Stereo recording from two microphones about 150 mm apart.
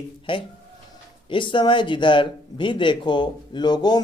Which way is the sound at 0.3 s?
35° left (ahead or behind).